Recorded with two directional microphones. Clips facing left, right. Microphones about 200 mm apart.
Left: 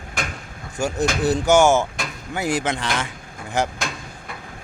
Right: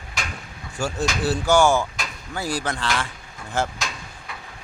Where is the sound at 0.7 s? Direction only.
20° left (ahead or behind).